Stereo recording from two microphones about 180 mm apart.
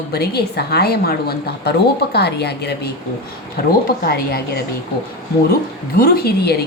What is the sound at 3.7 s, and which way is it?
Speech, 55° left (ahead or behind).